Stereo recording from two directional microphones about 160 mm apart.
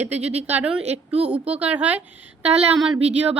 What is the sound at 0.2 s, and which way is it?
Speech, 40° right (ahead or behind).